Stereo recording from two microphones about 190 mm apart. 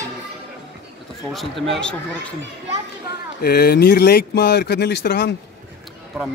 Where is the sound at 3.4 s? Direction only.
55° left (ahead or behind).